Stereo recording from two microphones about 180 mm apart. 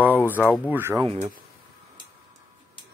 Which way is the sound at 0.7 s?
10° right (ahead or behind).